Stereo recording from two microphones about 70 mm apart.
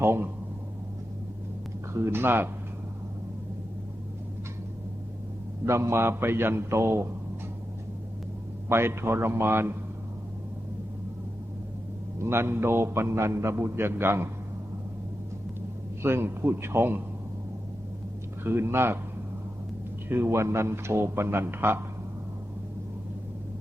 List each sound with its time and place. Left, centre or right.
0.0 s a man's voice: right
1.9 s a man's voice: right
5.6 s a man's voice: right
8.7 s a man's voice: right
12.2 s a man's voice: right
16.0 s a man's voice: right
18.4 s a man's voice: right
20.1 s a man's voice: right